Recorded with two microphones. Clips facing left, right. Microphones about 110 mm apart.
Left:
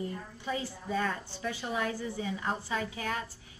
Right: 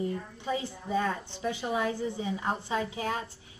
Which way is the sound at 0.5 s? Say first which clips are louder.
Right 3 dB; 20° right (ahead or behind).